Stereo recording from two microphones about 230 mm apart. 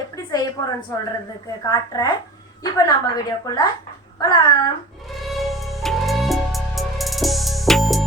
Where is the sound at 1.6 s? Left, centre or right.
Centre.